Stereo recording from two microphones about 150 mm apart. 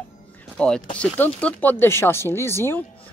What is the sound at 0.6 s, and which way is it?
Speech, 5° left (ahead or behind).